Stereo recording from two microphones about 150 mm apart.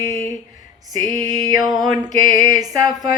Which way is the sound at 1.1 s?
25° right (ahead or behind).